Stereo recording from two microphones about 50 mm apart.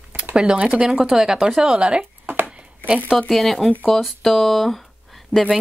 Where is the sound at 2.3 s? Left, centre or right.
Right.